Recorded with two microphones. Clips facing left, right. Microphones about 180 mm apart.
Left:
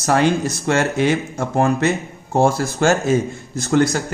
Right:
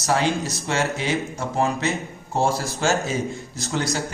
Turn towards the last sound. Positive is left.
turn(degrees=55)  # may be behind; listen again after turning